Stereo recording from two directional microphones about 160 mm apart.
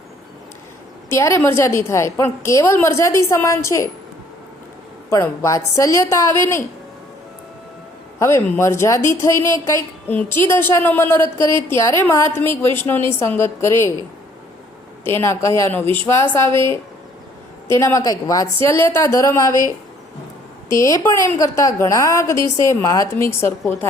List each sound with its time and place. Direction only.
1.1 s a woman's voice: 15° left (ahead or behind)
5.0 s a woman's voice: 20° left (ahead or behind)
8.2 s a woman's voice: 15° left (ahead or behind)
15.0 s a woman's voice: 15° left (ahead or behind)